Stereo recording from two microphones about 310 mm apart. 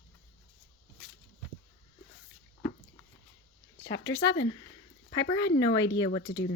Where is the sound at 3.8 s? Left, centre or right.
Left.